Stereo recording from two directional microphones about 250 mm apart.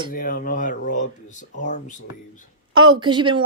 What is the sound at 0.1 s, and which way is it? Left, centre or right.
Speech, left.